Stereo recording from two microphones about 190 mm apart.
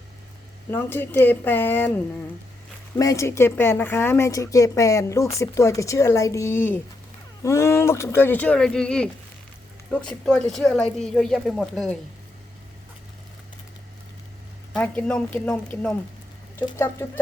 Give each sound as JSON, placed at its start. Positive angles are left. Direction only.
{"t": 0.7, "sound": "speech", "side_deg": 10}
{"t": 2.9, "sound": "speech", "side_deg": 15}
{"t": 14.7, "sound": "speech", "side_deg": 5}